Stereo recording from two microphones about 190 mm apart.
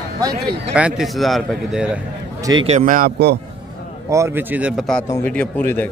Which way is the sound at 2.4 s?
20° right (ahead or behind).